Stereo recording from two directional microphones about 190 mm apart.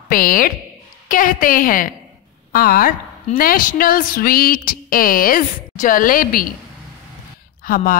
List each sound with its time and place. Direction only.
0.1 s a woman's voice: 50° left (ahead or behind)
7.6 s a woman's voice: 50° left (ahead or behind)